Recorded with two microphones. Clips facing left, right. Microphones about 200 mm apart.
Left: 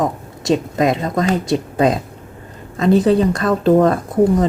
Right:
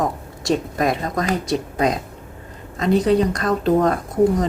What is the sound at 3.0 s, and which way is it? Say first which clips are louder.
Speech: left 3 dB; 30° left (ahead or behind).